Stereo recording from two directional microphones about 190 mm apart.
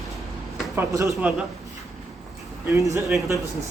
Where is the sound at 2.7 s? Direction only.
15° right (ahead or behind).